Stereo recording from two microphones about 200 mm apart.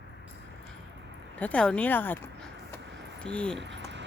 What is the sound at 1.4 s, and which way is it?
Speech, 5° left (ahead or behind).